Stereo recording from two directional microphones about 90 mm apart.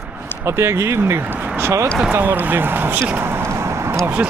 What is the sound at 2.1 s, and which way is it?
Speech, 25° right (ahead or behind).